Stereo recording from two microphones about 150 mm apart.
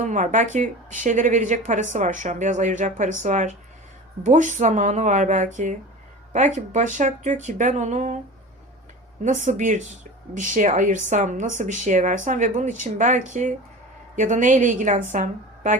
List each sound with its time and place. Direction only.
0.0 s speech: 55° right (ahead or behind)
9.2 s speech: 55° right (ahead or behind)